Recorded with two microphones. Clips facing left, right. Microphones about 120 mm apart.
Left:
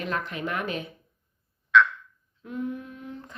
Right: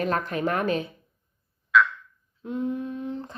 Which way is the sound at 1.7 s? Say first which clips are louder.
Left 1 dB; 5° right (ahead or behind).